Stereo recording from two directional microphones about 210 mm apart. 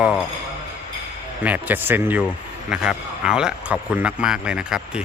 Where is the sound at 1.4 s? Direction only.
10° right (ahead or behind).